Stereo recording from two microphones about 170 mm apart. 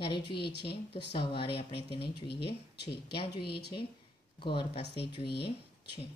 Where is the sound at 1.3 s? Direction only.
35° left (ahead or behind).